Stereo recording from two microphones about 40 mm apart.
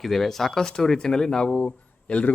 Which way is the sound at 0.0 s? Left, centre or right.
Centre.